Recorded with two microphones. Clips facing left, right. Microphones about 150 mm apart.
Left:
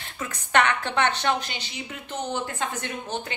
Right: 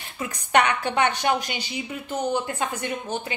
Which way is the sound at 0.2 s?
15° right (ahead or behind).